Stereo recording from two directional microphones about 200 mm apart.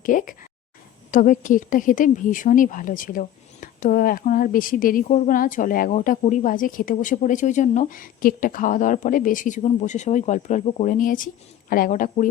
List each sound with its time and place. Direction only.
0.0 s speech: 40° left (ahead or behind)